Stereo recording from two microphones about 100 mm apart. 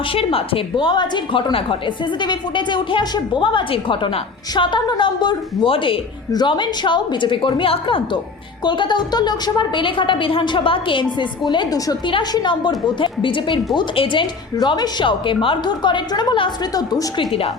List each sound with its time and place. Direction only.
0.1 s a woman's voice: 70° left (ahead or behind); by 5.6 s 50° left (ahead or behind)
5.6 s a woman's voice: 65° left (ahead or behind)
6.3 s a woman's voice: 50° left (ahead or behind)
16.7 s a woman's voice: 40° left (ahead or behind)